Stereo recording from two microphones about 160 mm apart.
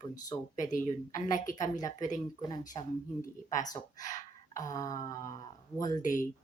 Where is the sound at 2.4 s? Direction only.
25° left (ahead or behind).